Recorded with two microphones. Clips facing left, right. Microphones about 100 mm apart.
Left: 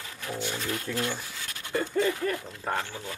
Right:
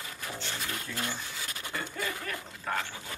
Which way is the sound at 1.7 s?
35° left (ahead or behind).